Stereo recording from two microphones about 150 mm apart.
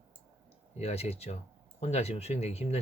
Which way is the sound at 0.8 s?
45° left (ahead or behind).